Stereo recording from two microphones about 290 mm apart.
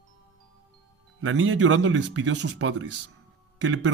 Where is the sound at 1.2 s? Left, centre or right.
Right.